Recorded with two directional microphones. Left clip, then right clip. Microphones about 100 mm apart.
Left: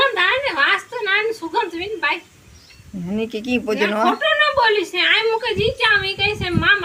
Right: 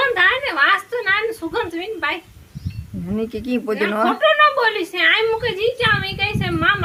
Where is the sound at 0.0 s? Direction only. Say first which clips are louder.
Right 1 dB; 40° right (ahead or behind).